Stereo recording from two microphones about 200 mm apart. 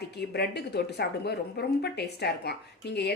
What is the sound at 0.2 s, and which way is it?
A woman's voice, 55° left (ahead or behind).